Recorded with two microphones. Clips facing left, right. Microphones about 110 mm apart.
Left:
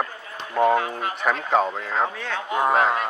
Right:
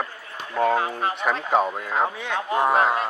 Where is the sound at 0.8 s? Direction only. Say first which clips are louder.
Right 2 dB; 30° right (ahead or behind).